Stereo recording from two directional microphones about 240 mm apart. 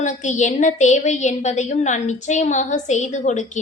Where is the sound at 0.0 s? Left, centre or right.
Left.